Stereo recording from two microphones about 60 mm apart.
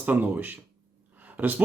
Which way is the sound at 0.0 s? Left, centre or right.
Right.